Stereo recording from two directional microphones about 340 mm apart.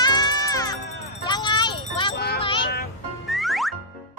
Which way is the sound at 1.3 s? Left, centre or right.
Centre.